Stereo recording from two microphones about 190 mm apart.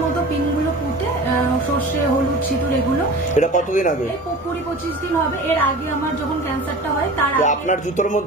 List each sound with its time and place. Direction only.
3.3 s speech: 40° left (ahead or behind)
7.3 s speech: 40° left (ahead or behind)